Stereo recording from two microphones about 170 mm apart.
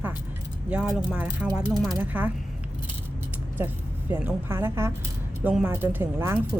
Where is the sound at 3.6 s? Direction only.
10° right (ahead or behind).